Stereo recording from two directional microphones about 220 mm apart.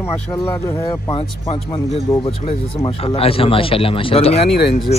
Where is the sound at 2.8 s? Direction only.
20° left (ahead or behind).